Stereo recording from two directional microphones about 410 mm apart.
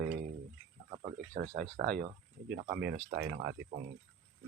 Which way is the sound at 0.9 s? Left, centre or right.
Centre.